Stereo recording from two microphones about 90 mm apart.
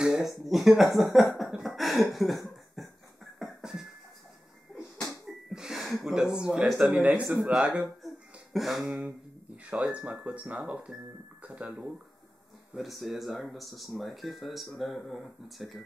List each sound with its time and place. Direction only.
0.0 s speech: 5° right (ahead or behind)
3.3 s music: centre (ahead or behind)
5.5 s speech: 5° right (ahead or behind)
8.5 s speech: centre (ahead or behind)
9.7 s speech: 15° right (ahead or behind)
12.7 s speech: centre (ahead or behind)